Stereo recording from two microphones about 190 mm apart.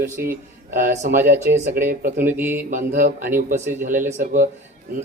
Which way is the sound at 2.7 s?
45° right (ahead or behind).